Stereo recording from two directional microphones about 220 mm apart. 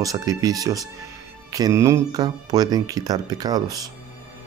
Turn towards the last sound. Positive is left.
turn(degrees=-15)  # may be behind; listen again after turning